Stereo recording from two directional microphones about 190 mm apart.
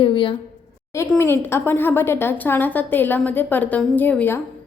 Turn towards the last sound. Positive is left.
turn(degrees=10)  # may be behind; listen again after turning